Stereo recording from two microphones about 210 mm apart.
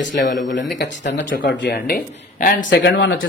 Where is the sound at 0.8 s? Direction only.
50° left (ahead or behind).